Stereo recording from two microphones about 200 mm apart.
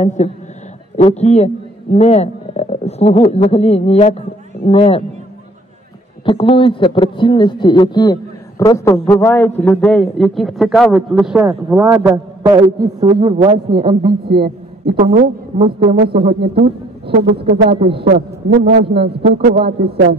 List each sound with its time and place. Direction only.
0.2 s a man's voice: 35° left (ahead or behind)
6.2 s a man's voice: 25° left (ahead or behind); by 14.1 s 25° right (ahead or behind)
14.2 s a man's voice: 55° right (ahead or behind)
15.0 s speech: 30° right (ahead or behind)
17.6 s speech: 30° right (ahead or behind)
18.0 s a man's voice: 45° right (ahead or behind)
19.2 s speech: 30° right (ahead or behind)